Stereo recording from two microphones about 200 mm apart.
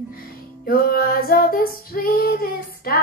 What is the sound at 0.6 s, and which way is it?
Female singing, 45° left (ahead or behind).